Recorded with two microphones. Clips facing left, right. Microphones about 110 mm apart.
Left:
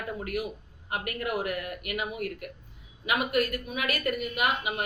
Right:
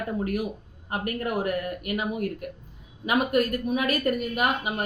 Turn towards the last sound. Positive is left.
turn(degrees=-40)  # may be behind; listen again after turning